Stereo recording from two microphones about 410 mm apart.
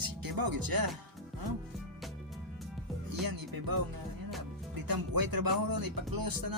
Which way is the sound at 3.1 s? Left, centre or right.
Right.